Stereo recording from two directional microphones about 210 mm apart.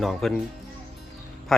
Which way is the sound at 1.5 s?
Centre (ahead or behind).